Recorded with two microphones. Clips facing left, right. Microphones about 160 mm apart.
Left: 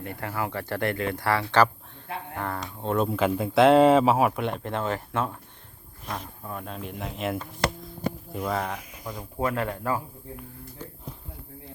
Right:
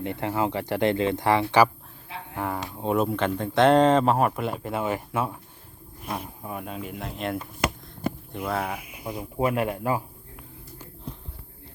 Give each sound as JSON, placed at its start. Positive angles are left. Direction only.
{"t": 0.0, "sound": "speech", "side_deg": -20}
{"t": 3.2, "sound": "speech", "side_deg": 5}